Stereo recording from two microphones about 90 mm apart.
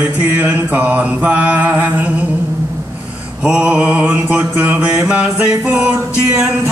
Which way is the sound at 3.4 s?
10° right (ahead or behind).